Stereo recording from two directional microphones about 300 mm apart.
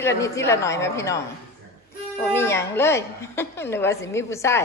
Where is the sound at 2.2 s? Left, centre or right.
Centre.